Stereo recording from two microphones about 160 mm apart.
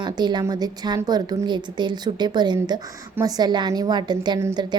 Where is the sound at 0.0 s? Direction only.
30° right (ahead or behind).